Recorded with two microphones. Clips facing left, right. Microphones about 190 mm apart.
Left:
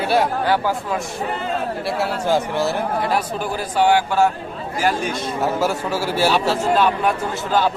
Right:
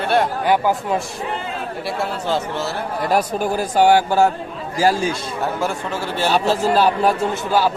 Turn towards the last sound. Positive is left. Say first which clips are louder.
# right 2 dB
turn(degrees=-35)  # may be behind; listen again after turning